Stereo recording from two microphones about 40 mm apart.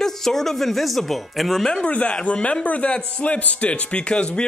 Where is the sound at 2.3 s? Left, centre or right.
Left.